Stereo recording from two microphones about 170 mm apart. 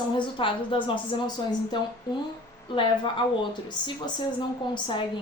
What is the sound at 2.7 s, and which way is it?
A woman's voice, 30° left (ahead or behind).